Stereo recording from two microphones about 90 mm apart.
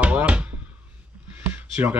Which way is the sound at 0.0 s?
15° right (ahead or behind).